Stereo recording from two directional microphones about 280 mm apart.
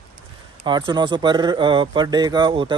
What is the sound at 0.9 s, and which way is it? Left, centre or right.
Speech, centre.